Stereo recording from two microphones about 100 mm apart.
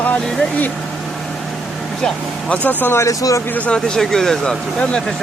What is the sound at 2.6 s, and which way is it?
Speech, 20° left (ahead or behind).